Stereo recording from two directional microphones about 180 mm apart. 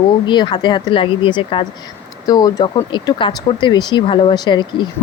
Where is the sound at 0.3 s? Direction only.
25° left (ahead or behind).